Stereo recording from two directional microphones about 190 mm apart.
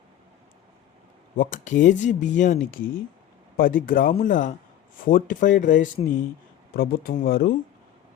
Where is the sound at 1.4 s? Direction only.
45° left (ahead or behind).